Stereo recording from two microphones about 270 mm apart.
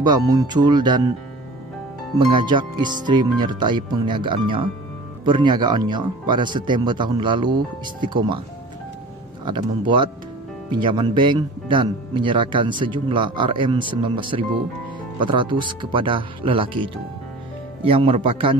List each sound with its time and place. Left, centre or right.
0.0 s speech: centre
2.1 s speech: centre
9.4 s speech: centre